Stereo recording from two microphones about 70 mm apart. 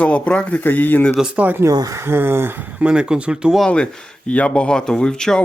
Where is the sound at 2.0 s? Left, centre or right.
Right.